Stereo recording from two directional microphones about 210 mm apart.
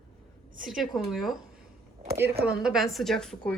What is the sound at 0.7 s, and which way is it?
Speech, centre (ahead or behind).